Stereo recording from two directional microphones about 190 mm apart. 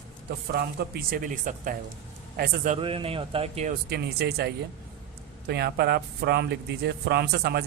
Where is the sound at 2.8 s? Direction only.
30° right (ahead or behind).